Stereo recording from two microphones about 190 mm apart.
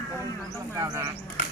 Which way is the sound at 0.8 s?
15° right (ahead or behind).